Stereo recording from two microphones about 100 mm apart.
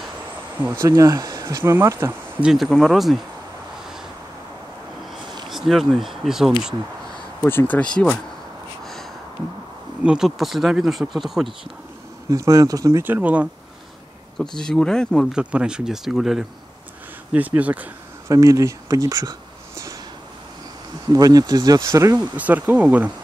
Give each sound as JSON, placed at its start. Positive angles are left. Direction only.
{"t": 0.6, "sound": "speech", "side_deg": -30}
{"t": 1.6, "sound": "speech", "side_deg": -25}
{"t": 2.4, "sound": "speech", "side_deg": 0}
{"t": 5.5, "sound": "speech", "side_deg": 0}
{"t": 7.4, "sound": "speech", "side_deg": 20}
{"t": 10.0, "sound": "speech", "side_deg": -5}
{"t": 12.3, "sound": "speech", "side_deg": -35}
{"t": 13.0, "sound": "speech", "side_deg": -15}
{"t": 14.4, "sound": "speech", "side_deg": 5}
{"t": 15.3, "sound": "speech", "side_deg": -10}
{"t": 17.3, "sound": "speech", "side_deg": -15}
{"t": 18.3, "sound": "speech", "side_deg": -35}
{"t": 21.1, "sound": "speech", "side_deg": -40}
{"t": 22.1, "sound": "speech", "side_deg": -15}